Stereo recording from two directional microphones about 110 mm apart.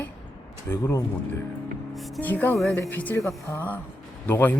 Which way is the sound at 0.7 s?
25° left (ahead or behind).